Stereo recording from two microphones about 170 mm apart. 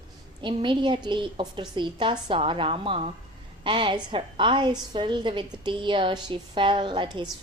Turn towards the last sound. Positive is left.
turn(degrees=-30)  # may be behind; listen again after turning